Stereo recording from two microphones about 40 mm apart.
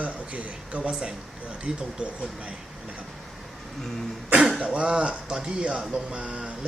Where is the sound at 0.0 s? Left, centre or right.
Right.